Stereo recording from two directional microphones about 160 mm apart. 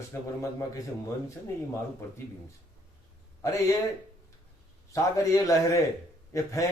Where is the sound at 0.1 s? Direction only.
15° left (ahead or behind).